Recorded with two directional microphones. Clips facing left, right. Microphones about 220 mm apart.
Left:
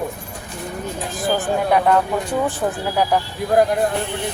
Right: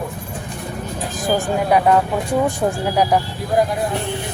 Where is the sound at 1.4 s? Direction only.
5° right (ahead or behind).